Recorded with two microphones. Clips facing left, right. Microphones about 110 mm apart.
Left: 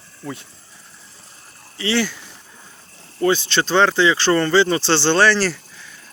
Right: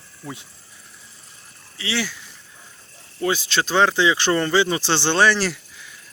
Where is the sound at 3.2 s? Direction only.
5° right (ahead or behind).